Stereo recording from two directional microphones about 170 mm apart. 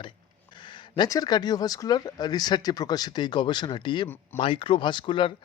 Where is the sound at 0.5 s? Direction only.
25° left (ahead or behind).